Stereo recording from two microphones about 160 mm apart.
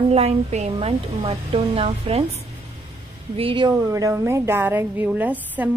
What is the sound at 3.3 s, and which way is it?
A woman's voice, 30° right (ahead or behind).